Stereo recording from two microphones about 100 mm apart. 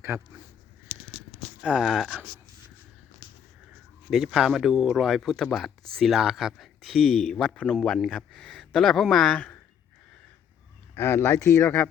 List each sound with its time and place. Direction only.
0.1 s speech: 25° right (ahead or behind)
1.6 s speech: 5° right (ahead or behind)
4.1 s speech: 5° right (ahead or behind)
10.9 s speech: 25° left (ahead or behind)